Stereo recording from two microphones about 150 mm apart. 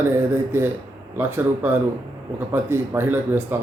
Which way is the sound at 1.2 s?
15° right (ahead or behind).